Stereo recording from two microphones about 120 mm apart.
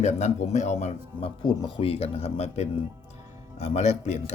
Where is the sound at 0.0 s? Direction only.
75° left (ahead or behind).